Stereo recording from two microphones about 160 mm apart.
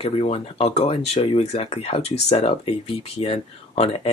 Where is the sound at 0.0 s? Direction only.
40° left (ahead or behind).